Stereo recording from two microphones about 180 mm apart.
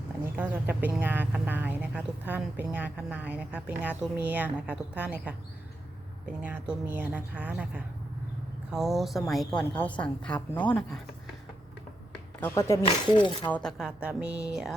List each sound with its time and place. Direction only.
0.3 s speech: 10° right (ahead or behind)
6.4 s a woman's voice: 10° right (ahead or behind); by 11.0 s 5° left (ahead or behind)
12.4 s speech: 15° left (ahead or behind)
12.8 s speech: 25° left (ahead or behind)
13.5 s a woman's voice: 5° left (ahead or behind)